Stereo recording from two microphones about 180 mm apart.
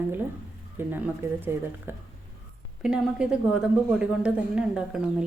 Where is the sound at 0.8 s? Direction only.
10° right (ahead or behind).